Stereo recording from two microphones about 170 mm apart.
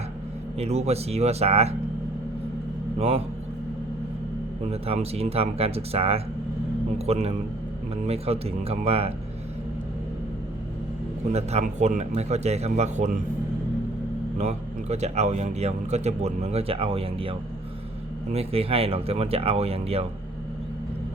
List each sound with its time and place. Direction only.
0.6 s speech: 40° right (ahead or behind)
3.0 s speech: 35° right (ahead or behind)
4.7 s speech: 35° right (ahead or behind)
11.3 s speech: 40° right (ahead or behind)
14.3 s speech: 40° right (ahead or behind)